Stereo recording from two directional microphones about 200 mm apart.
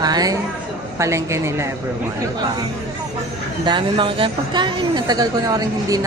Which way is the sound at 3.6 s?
25° right (ahead or behind).